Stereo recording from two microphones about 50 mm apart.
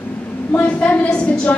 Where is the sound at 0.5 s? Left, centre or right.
Left.